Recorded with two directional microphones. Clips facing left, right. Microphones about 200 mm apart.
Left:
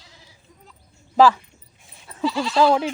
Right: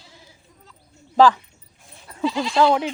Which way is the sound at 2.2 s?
15° right (ahead or behind).